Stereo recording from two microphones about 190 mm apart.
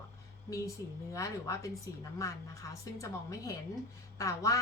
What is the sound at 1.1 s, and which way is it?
Speech, 15° left (ahead or behind).